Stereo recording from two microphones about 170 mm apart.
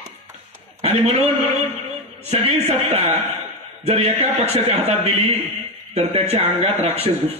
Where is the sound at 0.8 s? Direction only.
35° right (ahead or behind).